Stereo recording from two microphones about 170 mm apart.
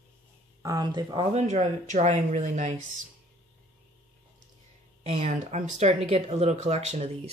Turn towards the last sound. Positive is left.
turn(degrees=-40)  # may be behind; listen again after turning